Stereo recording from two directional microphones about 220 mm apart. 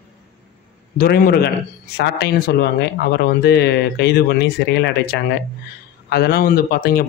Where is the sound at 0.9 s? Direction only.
40° left (ahead or behind).